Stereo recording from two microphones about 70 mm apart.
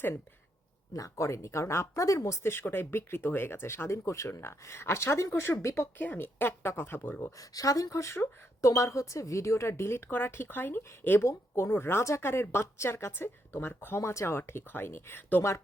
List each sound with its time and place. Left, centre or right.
0.9 s a woman's voice: left
6.0 s a woman's voice: left
7.2 s a woman's voice: left